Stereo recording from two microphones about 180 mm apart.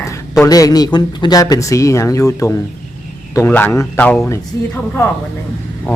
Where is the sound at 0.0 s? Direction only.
15° left (ahead or behind).